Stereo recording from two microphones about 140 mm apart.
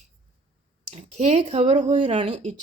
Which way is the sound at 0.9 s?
50° right (ahead or behind).